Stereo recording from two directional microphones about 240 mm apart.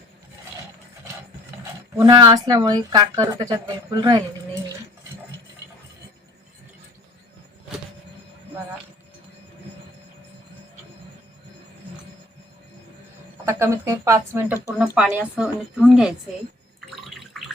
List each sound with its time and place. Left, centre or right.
2.0 s a woman's voice: centre
13.4 s a woman's voice: centre
16.9 s a sound: centre